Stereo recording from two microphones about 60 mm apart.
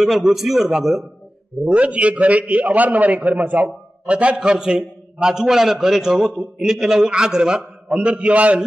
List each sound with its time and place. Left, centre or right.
0.0 s a man's voice: centre
1.6 s a man's voice: centre